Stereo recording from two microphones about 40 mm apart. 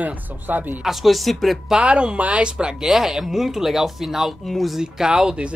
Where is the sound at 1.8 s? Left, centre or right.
Right.